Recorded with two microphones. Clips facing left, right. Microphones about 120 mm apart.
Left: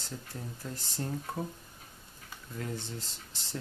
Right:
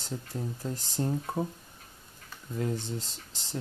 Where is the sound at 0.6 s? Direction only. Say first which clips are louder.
Right 5 dB; 20° right (ahead or behind).